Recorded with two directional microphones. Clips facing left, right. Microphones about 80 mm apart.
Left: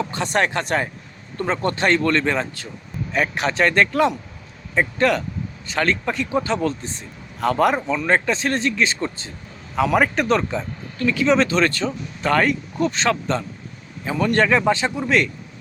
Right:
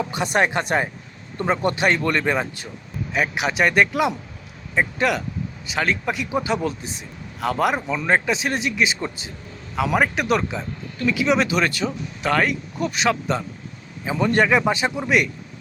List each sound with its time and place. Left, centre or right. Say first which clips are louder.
0.0 s a man's voice: even; centre